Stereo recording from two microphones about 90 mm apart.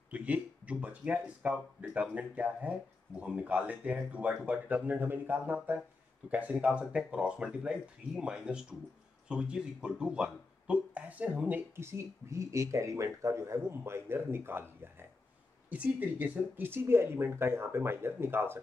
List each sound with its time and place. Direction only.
0.1 s speech: 15° right (ahead or behind)